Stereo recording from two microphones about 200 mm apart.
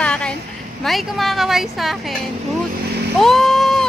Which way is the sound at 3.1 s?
Centre (ahead or behind).